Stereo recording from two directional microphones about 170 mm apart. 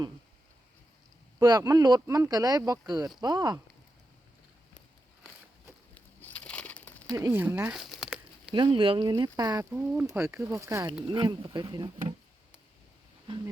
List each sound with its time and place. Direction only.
1.4 s speech: 20° right (ahead or behind)
5.9 s a sound: 10° left (ahead or behind)
7.1 s speech: 20° right (ahead or behind); by 8.5 s 5° right (ahead or behind)
8.5 s speech: 30° right (ahead or behind)
9.7 s speech: 10° right (ahead or behind); by 11.9 s 25° right (ahead or behind)